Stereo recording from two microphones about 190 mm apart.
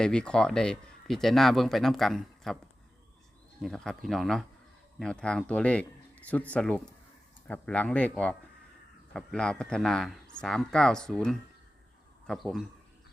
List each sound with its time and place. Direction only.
0.0 s speech: 5° left (ahead or behind)
3.6 s speech: 5° left (ahead or behind)